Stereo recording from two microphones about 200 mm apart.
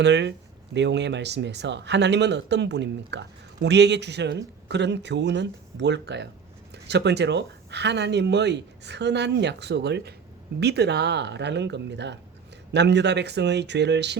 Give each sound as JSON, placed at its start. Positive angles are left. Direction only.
{"t": 0.0, "sound": "speech", "side_deg": -60}